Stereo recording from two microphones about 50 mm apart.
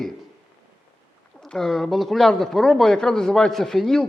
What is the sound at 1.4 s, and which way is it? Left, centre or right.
A man's voice, centre.